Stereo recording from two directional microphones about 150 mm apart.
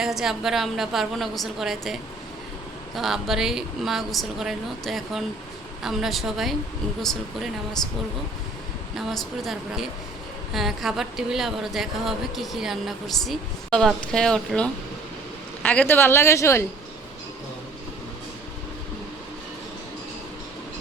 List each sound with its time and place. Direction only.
0.0 s speech: 5° right (ahead or behind)
9.0 s speech: centre (ahead or behind); by 16.6 s 20° left (ahead or behind)